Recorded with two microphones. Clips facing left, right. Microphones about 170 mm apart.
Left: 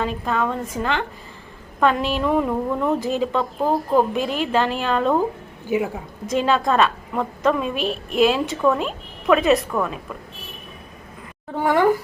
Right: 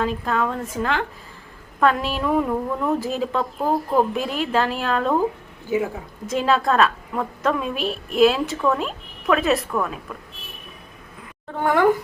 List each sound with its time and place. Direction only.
0.0 s a woman's voice: centre (ahead or behind)
5.6 s a woman's voice: 15° left (ahead or behind)
6.2 s a woman's voice: centre (ahead or behind)
11.6 s a woman's voice: centre (ahead or behind)